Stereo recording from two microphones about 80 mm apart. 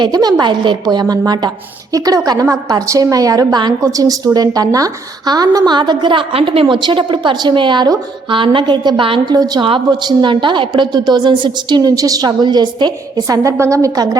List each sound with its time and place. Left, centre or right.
0.0 s a woman's voice: right
9.6 s a woman's voice: right
13.2 s a woman's voice: right